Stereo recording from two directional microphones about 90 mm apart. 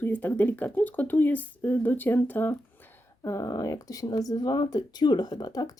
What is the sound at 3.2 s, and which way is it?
Speech, 35° left (ahead or behind).